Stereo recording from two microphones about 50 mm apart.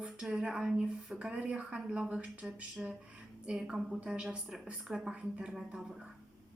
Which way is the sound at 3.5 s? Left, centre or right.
Right.